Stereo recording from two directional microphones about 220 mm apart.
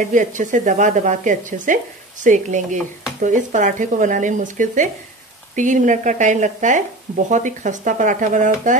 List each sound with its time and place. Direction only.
0.0 s speech: 35° right (ahead or behind)